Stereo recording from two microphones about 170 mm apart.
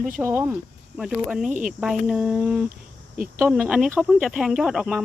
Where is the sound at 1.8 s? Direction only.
5° right (ahead or behind).